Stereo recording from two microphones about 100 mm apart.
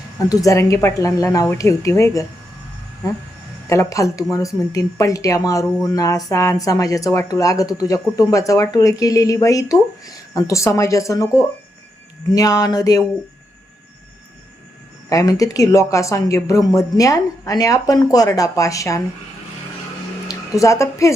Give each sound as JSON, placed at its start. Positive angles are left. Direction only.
{"t": 0.2, "sound": "speech", "side_deg": 35}
{"t": 15.1, "sound": "speech", "side_deg": 35}
{"t": 20.2, "sound": "speech", "side_deg": 30}